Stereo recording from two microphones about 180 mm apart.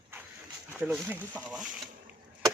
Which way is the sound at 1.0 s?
10° right (ahead or behind).